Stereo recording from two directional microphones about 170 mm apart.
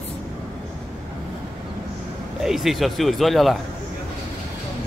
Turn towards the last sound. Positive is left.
turn(degrees=0)  # may be behind; listen again after turning